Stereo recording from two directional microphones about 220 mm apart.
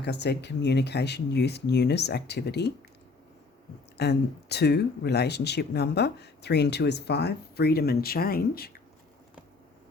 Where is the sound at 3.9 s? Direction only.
50° left (ahead or behind).